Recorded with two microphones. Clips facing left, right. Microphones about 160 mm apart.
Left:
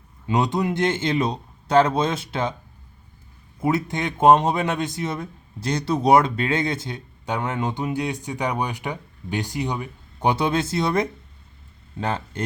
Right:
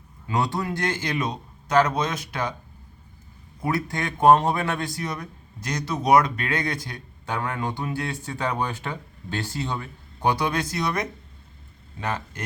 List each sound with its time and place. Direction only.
0.3 s a man's voice: 20° left (ahead or behind)
3.6 s a man's voice: 20° left (ahead or behind)